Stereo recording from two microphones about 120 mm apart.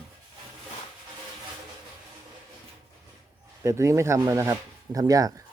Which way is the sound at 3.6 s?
25° right (ahead or behind).